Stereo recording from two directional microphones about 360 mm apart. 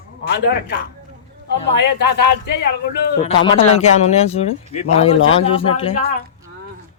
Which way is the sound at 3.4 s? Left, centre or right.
Centre.